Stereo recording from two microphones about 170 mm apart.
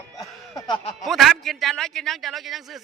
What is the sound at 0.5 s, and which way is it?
Speech, 25° left (ahead or behind).